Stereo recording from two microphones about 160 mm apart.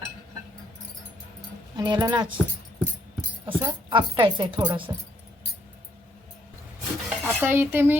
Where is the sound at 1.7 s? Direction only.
25° right (ahead or behind).